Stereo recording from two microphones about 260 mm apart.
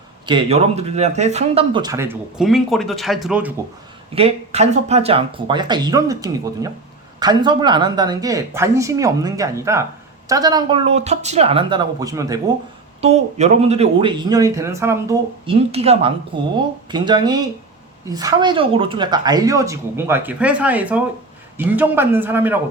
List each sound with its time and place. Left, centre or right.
0.3 s speech: right; by 3.5 s centre
4.1 s speech: right
13.0 s speech: right
15.4 s speech: right; by 22.5 s centre